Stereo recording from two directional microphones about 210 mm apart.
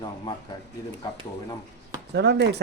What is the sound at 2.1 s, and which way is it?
Speech, 55° right (ahead or behind).